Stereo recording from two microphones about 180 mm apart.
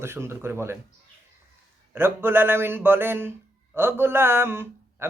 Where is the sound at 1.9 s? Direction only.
10° right (ahead or behind).